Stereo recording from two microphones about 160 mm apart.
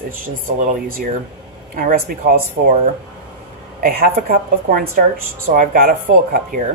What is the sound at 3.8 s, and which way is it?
A woman's voice, 70° right (ahead or behind).